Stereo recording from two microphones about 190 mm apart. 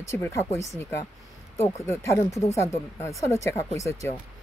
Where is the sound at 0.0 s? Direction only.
15° left (ahead or behind).